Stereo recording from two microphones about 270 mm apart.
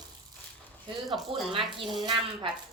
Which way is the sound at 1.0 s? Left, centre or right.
Centre.